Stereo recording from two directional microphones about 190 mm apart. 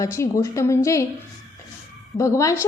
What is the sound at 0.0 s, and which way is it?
A woman's voice, 15° left (ahead or behind).